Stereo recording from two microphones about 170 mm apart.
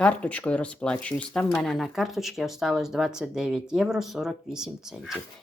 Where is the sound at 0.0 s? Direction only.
10° left (ahead or behind).